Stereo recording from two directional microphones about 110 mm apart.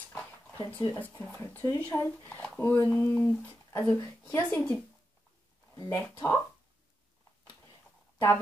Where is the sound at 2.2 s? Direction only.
10° left (ahead or behind).